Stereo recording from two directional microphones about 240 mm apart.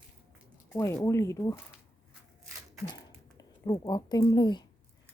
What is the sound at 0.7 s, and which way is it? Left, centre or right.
Speech, centre.